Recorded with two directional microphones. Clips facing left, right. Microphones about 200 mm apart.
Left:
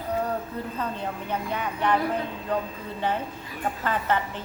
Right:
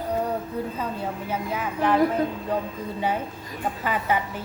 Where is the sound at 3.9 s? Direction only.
10° right (ahead or behind).